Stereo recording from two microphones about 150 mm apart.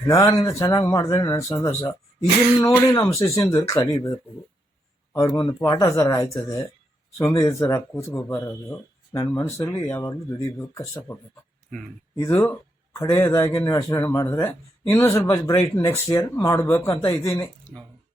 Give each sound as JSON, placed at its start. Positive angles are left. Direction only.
{"t": 0.1, "sound": "speech", "side_deg": 20}
{"t": 5.1, "sound": "speech", "side_deg": 20}
{"t": 12.3, "sound": "speech", "side_deg": 20}